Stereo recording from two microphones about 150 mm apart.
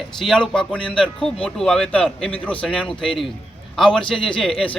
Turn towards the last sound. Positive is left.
turn(degrees=5)  # may be behind; listen again after turning